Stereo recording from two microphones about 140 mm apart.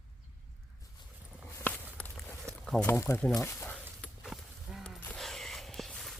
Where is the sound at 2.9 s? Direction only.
15° left (ahead or behind).